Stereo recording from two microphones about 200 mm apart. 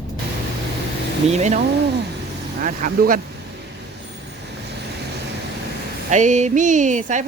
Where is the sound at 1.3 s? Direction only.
35° right (ahead or behind).